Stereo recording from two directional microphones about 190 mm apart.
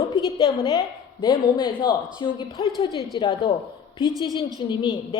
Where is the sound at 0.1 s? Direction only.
20° left (ahead or behind).